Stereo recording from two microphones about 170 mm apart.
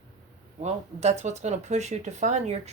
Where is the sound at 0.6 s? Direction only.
40° right (ahead or behind).